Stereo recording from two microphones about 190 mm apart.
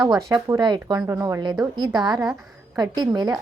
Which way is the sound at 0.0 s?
20° right (ahead or behind).